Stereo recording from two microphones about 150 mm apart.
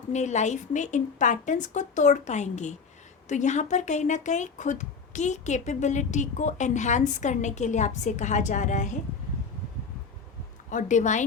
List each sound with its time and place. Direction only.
0.1 s speech: 50° left (ahead or behind)
10.7 s speech: 55° left (ahead or behind)